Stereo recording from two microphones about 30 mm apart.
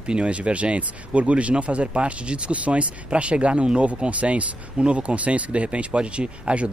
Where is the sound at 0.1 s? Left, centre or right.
Right.